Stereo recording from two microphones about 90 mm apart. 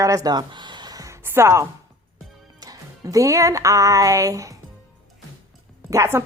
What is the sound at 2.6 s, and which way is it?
Music, 40° right (ahead or behind).